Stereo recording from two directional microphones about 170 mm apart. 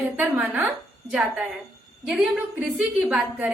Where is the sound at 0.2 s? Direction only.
10° right (ahead or behind).